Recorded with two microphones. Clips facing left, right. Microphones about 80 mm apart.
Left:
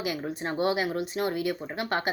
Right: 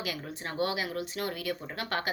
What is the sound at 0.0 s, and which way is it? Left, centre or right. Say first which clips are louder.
Speech: left 6 dB; left.